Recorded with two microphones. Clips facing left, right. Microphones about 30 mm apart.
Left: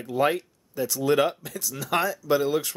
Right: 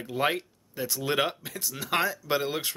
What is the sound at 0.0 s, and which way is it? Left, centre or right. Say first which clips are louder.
Speech: left 4 dB; centre.